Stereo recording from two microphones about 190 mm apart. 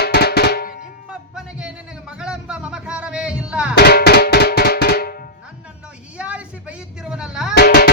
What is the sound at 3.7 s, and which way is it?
Drum, 60° left (ahead or behind).